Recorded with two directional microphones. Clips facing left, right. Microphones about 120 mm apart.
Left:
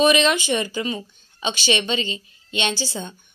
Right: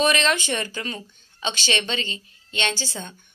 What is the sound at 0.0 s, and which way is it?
Speech, 15° left (ahead or behind).